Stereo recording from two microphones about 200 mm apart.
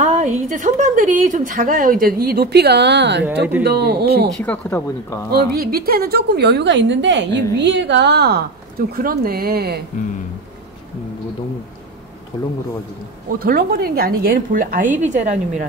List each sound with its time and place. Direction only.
0.0 s a woman's voice: 35° right (ahead or behind); by 4.3 s 50° right (ahead or behind)
4.4 s speech: 10° left (ahead or behind)
5.3 s a woman's voice: 50° right (ahead or behind)
13.4 s a woman's voice: 50° right (ahead or behind)